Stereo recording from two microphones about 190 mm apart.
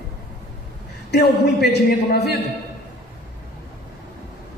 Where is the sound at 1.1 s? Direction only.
60° left (ahead or behind).